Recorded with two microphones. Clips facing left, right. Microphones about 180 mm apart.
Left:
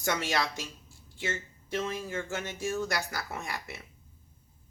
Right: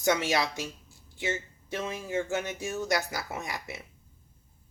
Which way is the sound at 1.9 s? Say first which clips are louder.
Right 4 dB; 15° right (ahead or behind).